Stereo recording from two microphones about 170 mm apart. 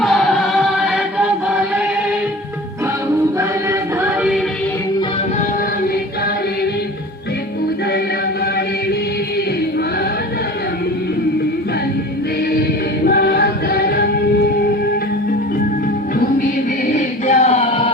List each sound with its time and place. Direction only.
0.0 s music: centre (ahead or behind)
3.7 s music: 10° right (ahead or behind)
13.1 s music: 65° left (ahead or behind)
16.9 s choir: 40° left (ahead or behind)